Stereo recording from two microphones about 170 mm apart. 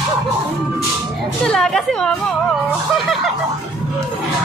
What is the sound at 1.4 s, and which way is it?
Chatter, 5° left (ahead or behind).